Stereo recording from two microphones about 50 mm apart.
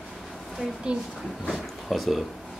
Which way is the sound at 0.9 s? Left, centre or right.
Centre.